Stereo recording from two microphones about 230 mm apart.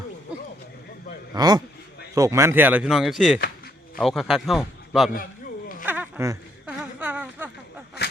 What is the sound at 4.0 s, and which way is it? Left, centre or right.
Speech, centre.